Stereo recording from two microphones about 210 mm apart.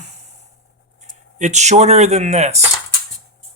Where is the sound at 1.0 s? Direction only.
35° right (ahead or behind).